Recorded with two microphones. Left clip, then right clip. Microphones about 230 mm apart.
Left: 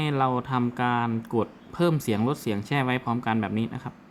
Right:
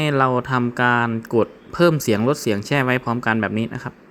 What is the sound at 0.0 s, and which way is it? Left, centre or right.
Speech, right.